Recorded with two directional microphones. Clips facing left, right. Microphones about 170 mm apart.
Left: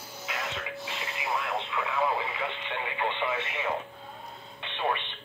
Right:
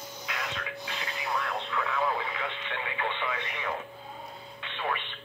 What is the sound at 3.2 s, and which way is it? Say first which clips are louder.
Radio: left 3 dB; 5° left (ahead or behind).